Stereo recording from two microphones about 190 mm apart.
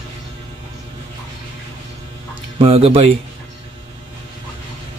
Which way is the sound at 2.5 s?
30° right (ahead or behind).